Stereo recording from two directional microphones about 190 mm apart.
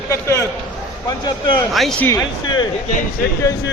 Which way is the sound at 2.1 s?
25° left (ahead or behind).